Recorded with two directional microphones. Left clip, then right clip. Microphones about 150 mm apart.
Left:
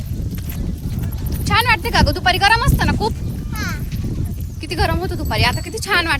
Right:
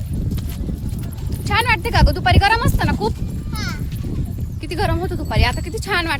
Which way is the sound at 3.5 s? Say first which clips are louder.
Left 2 dB; 75° right (ahead or behind).